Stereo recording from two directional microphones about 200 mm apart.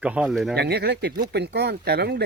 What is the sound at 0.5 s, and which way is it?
Speech, 55° right (ahead or behind).